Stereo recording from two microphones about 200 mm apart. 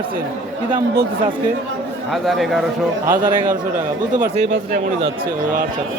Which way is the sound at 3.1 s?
40° right (ahead or behind).